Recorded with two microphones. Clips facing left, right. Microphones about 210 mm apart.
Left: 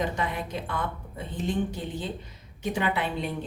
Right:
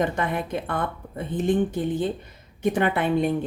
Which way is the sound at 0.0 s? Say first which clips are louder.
Right 5 dB; 55° right (ahead or behind).